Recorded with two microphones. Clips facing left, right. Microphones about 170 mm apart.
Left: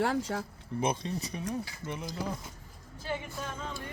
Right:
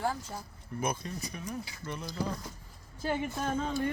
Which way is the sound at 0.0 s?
90° left.